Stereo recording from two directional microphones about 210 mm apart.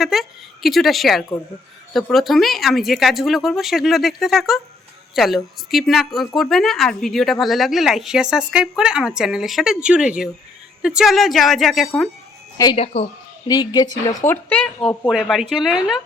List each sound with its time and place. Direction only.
0.0 s a woman's voice: centre (ahead or behind)
12.7 s a woman's voice: 30° left (ahead or behind); by 16.0 s centre (ahead or behind)